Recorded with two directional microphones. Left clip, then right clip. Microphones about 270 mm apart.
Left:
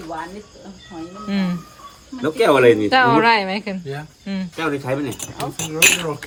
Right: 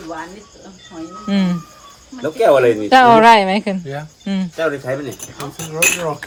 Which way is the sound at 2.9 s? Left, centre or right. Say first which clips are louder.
Right 6 dB; centre.